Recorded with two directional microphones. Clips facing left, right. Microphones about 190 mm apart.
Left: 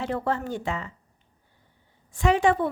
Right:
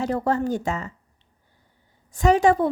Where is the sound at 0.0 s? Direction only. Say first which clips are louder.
Right 5 dB; 40° right (ahead or behind).